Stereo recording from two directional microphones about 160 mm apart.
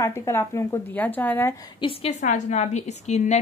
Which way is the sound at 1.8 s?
35° left (ahead or behind).